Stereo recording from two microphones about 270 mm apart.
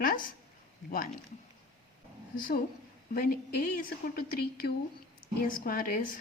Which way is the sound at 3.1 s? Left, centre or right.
Left.